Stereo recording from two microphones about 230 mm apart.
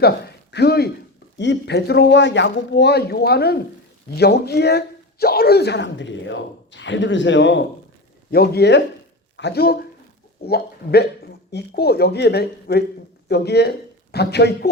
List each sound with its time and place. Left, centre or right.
0.5 s speech: left
11.5 s speech: left